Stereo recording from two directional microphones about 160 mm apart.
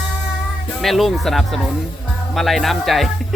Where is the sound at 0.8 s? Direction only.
Centre (ahead or behind).